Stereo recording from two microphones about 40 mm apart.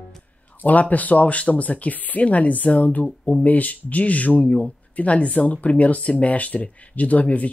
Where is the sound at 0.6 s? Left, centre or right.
Left.